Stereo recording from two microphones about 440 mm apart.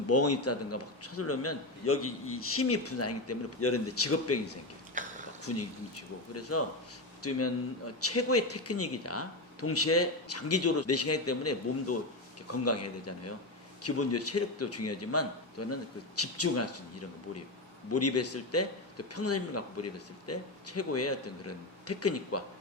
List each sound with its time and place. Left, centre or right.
0.1 s a man's voice: left
5.0 s a sound: centre
5.5 s a man's voice: left
17.9 s a man's voice: left